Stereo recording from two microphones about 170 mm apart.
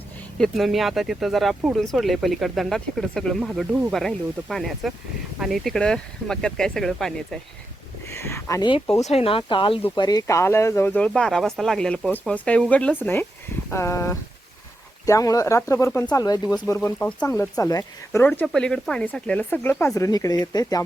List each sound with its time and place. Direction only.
0.3 s speech: centre (ahead or behind)
8.1 s speech: 15° left (ahead or behind)
9.0 s speech: 35° left (ahead or behind)